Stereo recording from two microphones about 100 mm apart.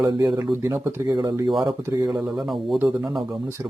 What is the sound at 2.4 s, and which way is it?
Speech, centre (ahead or behind).